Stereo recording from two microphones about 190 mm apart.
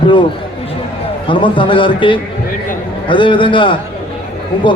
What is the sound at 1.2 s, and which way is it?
Speech, 25° left (ahead or behind).